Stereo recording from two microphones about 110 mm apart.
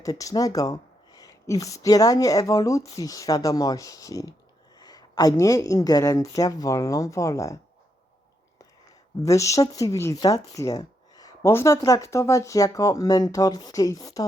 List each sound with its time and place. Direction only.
0.0 s speech: 30° left (ahead or behind)
9.2 s speech: 30° left (ahead or behind)
11.4 s speech: 25° left (ahead or behind)